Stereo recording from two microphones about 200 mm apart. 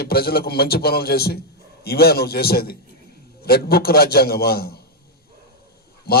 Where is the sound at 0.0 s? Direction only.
50° left (ahead or behind).